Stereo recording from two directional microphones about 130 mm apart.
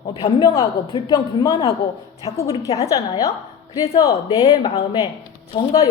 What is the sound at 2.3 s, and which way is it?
Speech, 55° left (ahead or behind).